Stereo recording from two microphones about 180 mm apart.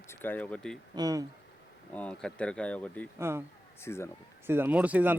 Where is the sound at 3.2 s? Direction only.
15° right (ahead or behind).